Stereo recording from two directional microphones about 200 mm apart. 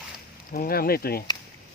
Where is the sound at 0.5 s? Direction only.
45° left (ahead or behind).